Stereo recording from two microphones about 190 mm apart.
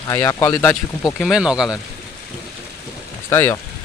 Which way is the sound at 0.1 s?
15° left (ahead or behind).